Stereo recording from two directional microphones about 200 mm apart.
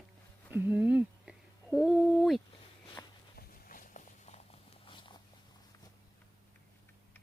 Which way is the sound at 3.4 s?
45° left (ahead or behind).